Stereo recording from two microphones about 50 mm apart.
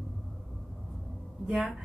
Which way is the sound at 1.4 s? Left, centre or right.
Centre.